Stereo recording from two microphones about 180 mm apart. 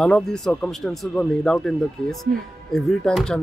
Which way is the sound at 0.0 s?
Centre (ahead or behind).